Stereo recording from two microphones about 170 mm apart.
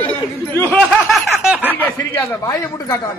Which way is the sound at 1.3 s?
10° right (ahead or behind).